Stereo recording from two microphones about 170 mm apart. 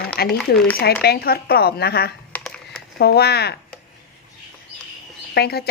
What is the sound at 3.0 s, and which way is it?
Speech, 70° left (ahead or behind).